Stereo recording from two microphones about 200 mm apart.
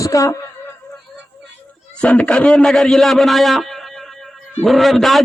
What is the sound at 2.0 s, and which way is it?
A man's voice, 5° left (ahead or behind).